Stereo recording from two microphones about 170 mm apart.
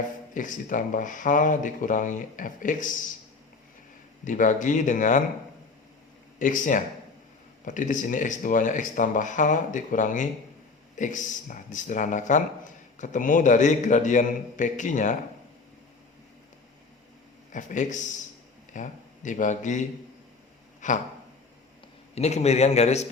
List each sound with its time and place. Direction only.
0.3 s speech: 50° left (ahead or behind)
4.3 s speech: 50° left (ahead or behind)
6.4 s speech: 50° left (ahead or behind)
17.5 s speech: 50° left (ahead or behind)
20.8 s speech: 45° left (ahead or behind)
22.1 s a man's voice: 40° left (ahead or behind)